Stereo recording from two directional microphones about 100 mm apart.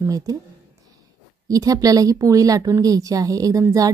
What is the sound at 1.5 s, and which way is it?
Speech, 35° right (ahead or behind).